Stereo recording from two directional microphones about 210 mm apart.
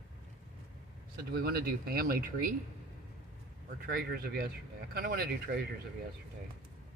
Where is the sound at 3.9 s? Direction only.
45° right (ahead or behind).